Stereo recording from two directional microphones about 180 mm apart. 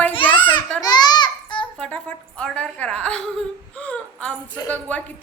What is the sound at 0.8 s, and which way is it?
Babbling, 20° left (ahead or behind).